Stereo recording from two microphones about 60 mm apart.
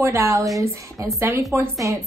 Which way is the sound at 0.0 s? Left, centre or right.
Right.